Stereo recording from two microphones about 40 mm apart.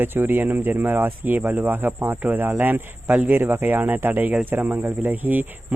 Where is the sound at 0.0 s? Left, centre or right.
Right.